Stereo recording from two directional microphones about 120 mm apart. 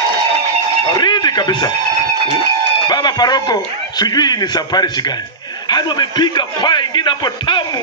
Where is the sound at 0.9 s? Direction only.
35° left (ahead or behind).